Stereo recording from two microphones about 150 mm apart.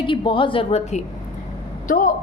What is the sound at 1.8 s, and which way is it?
Speech, 65° left (ahead or behind).